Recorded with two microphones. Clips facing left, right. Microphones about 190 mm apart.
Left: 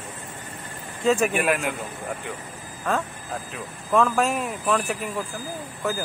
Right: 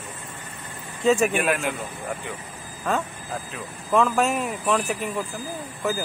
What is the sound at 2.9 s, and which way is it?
Speech, centre (ahead or behind).